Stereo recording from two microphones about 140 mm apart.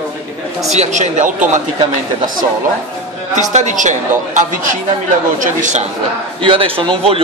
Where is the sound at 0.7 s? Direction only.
55° right (ahead or behind).